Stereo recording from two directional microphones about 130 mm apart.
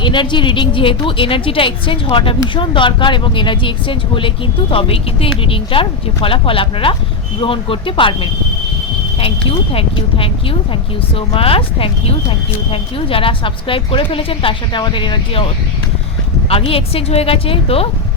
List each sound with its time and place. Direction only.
0.0 s a woman's voice: 40° left (ahead or behind)
16.5 s speech: 45° left (ahead or behind)